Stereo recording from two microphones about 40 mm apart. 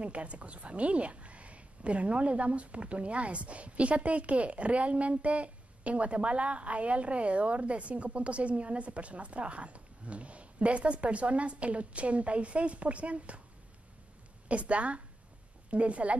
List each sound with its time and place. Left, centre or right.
0.0 s a woman's voice: right
14.5 s a woman's voice: right